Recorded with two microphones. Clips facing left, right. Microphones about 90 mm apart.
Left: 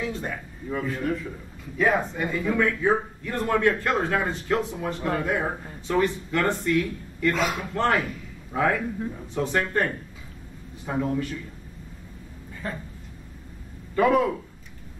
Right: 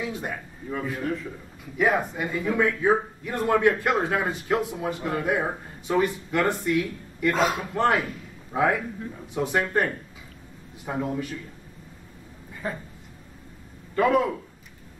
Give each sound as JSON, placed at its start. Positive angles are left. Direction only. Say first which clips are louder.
{"t": 0.0, "sound": "a man's voice", "louder": "left 1 dB", "side_deg": -15}
{"t": 1.8, "sound": "a man's voice", "louder": "even", "side_deg": -10}
{"t": 10.9, "sound": "speech", "louder": "left 2 dB", "side_deg": -10}
{"t": 12.6, "sound": "speech", "louder": "right 2 dB", "side_deg": -10}
{"t": 13.9, "sound": "a man's voice", "louder": "left 1 dB", "side_deg": 0}